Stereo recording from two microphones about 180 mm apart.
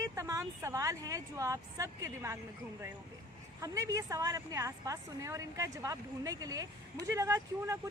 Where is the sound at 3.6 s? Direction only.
20° right (ahead or behind).